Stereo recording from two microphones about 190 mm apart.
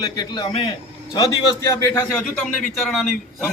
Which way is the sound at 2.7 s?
Centre (ahead or behind).